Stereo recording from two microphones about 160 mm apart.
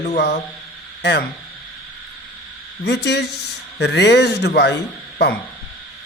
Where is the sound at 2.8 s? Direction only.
90° left.